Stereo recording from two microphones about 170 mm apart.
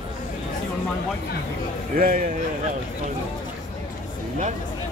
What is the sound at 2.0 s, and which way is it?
Speech, 60° right (ahead or behind).